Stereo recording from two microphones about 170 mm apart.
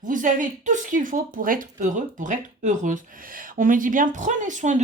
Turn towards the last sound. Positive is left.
turn(degrees=-45)  # may be behind; listen again after turning